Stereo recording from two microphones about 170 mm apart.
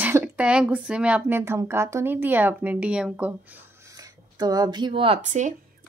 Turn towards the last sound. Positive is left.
turn(degrees=-45)  # may be behind; listen again after turning